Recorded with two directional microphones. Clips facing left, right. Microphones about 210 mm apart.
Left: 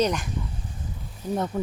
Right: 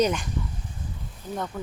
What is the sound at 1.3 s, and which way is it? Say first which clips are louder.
Speech: left 5 dB; 20° left (ahead or behind).